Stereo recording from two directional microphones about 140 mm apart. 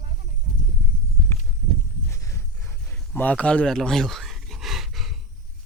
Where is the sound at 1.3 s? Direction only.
20° left (ahead or behind).